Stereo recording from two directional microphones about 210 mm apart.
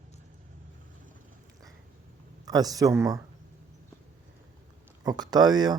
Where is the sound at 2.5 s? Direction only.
15° right (ahead or behind).